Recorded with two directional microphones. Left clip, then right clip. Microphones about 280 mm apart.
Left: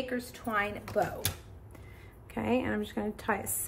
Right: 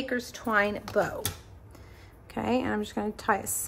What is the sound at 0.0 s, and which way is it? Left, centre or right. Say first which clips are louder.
A woman's voice: right 4 dB; right.